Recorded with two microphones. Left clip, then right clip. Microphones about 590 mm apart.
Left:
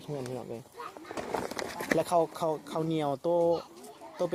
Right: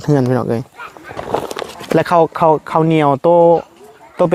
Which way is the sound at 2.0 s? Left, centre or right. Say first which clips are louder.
Right 17 dB; right.